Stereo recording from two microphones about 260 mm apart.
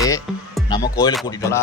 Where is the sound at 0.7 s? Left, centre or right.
Centre.